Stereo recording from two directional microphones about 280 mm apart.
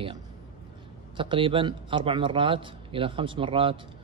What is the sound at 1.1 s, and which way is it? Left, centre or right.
A man's voice, centre.